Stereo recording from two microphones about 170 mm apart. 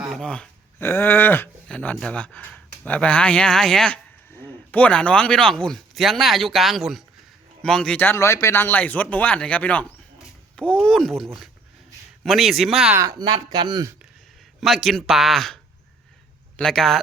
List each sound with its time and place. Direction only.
0.0 s speech: centre (ahead or behind)
10.8 s speech: 5° left (ahead or behind)
13.0 s speech: 20° right (ahead or behind)
14.6 s speech: centre (ahead or behind)
16.6 s speech: 5° left (ahead or behind)